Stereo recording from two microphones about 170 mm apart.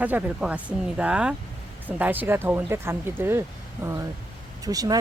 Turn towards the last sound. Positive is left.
turn(degrees=-20)  # may be behind; listen again after turning